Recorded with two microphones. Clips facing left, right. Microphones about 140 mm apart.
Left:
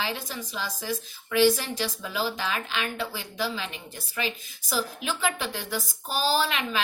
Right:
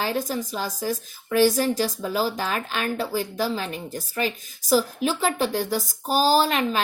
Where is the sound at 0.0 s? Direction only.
45° right (ahead or behind).